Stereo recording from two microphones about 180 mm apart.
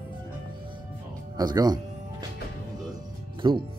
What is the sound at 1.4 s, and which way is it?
Speech, 20° right (ahead or behind).